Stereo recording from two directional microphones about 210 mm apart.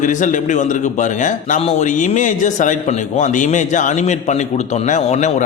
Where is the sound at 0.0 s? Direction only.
35° left (ahead or behind).